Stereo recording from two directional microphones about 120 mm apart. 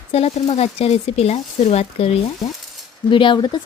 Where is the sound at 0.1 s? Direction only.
55° left (ahead or behind).